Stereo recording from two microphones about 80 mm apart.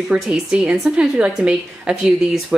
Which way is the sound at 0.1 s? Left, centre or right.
Centre.